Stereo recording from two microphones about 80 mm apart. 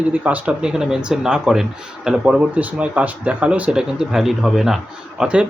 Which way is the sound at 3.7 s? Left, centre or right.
Centre.